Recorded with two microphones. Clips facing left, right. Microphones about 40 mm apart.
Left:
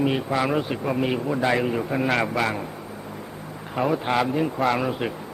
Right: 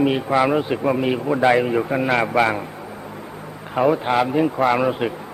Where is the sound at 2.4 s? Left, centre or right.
Right.